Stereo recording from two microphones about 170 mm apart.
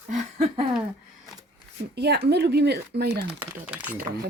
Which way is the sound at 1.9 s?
75° right (ahead or behind).